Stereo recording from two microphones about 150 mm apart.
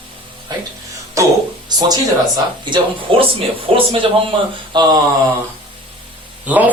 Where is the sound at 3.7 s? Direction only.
40° right (ahead or behind).